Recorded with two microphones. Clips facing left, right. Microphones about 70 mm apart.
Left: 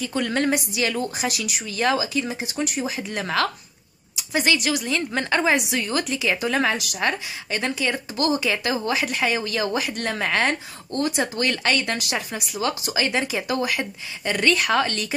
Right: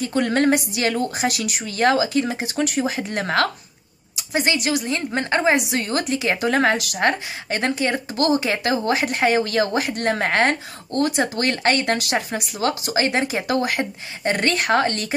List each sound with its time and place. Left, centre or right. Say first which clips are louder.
0.0 s a woman's voice: right 4 dB; right
2.8 s a woman's voice: right 4 dB; right
4.3 s speech: right 1 dB; right
5.8 s a woman's voice: right 2 dB; right